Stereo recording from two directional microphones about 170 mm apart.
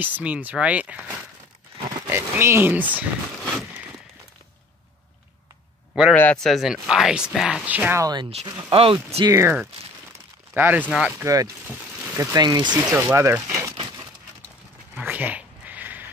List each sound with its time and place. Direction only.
0.0 s speech: 10° right (ahead or behind)
6.1 s speech: 5° left (ahead or behind); by 8.3 s 20° right (ahead or behind)
8.6 s speech: 35° right (ahead or behind)
9.2 s speech: 15° right (ahead or behind)
15.0 s cat: 10° right (ahead or behind)